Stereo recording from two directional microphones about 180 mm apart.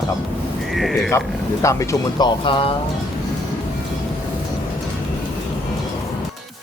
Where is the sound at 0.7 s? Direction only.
Centre (ahead or behind).